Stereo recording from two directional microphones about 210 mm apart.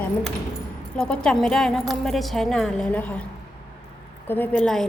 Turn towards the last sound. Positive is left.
turn(degrees=5)  # may be behind; listen again after turning